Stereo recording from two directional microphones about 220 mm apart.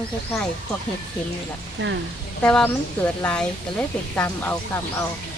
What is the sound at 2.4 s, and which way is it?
Speech, 5° left (ahead or behind).